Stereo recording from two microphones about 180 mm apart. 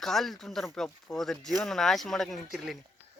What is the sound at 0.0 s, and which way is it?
Speech, centre (ahead or behind).